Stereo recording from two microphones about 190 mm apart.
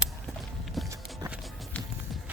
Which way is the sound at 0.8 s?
Centre (ahead or behind).